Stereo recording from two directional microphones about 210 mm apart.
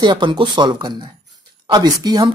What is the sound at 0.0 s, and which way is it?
Speech, 20° right (ahead or behind).